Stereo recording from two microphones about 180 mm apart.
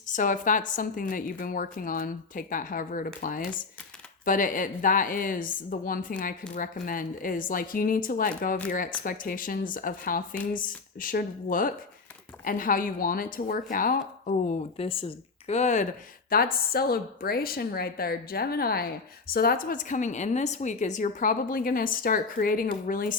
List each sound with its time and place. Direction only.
0.1 s a woman's voice: 45° left (ahead or behind)
14.8 s speech: 30° left (ahead or behind)
16.3 s a woman's voice: 55° left (ahead or behind)